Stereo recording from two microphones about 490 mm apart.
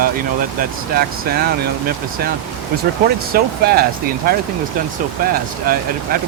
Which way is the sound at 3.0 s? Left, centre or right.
Centre.